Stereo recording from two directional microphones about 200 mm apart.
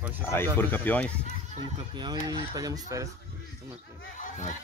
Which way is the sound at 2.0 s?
20° right (ahead or behind).